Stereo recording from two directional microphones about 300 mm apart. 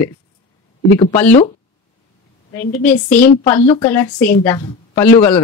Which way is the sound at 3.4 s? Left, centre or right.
Centre.